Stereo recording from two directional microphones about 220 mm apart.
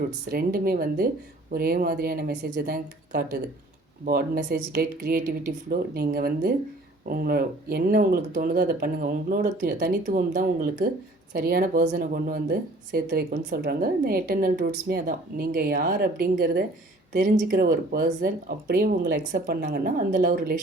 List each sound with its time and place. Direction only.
0.3 s speech: 40° right (ahead or behind)